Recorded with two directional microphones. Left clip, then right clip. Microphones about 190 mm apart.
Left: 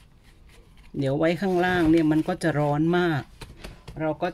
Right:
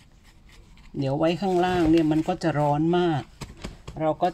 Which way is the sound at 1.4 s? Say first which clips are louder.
Even; 15° left (ahead or behind).